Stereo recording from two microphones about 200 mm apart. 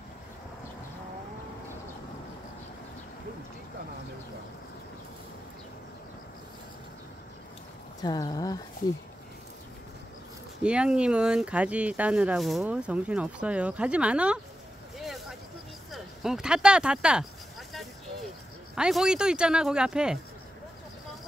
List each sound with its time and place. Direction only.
8.0 s speech: 20° left (ahead or behind)
10.6 s speech: 5° right (ahead or behind)
15.9 s a sound: centre (ahead or behind)
18.8 s speech: 5° right (ahead or behind)